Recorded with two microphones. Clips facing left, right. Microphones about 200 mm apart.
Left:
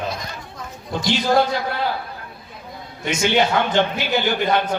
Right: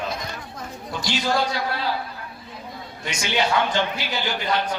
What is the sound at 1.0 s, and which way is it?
Speech, 55° left (ahead or behind).